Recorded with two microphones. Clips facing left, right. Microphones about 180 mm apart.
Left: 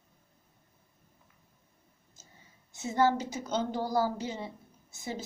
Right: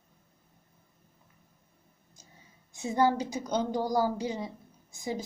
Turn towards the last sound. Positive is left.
turn(degrees=-15)  # may be behind; listen again after turning